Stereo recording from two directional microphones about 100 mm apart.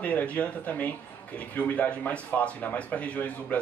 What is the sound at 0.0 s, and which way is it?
Speech, 15° left (ahead or behind).